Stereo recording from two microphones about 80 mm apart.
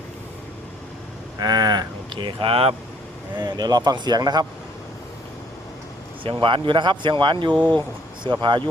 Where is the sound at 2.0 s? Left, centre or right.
Right.